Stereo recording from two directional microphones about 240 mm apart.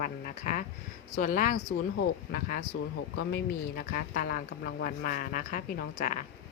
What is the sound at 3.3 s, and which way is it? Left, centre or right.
A woman's voice, left.